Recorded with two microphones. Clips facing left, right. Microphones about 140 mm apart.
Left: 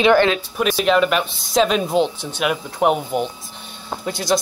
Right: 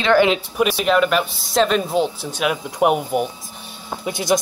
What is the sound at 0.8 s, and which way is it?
Speech, centre (ahead or behind).